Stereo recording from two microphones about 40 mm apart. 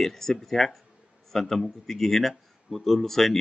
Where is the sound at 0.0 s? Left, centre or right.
Centre.